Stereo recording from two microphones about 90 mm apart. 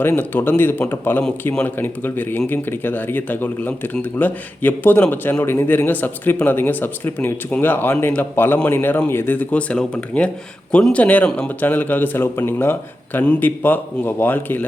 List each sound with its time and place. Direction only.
0.2 s speech: 20° left (ahead or behind)